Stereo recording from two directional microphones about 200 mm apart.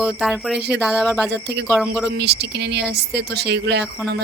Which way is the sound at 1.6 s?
Centre (ahead or behind).